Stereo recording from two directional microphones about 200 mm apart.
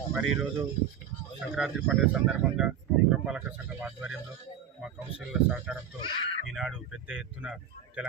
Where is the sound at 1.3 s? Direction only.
Centre (ahead or behind).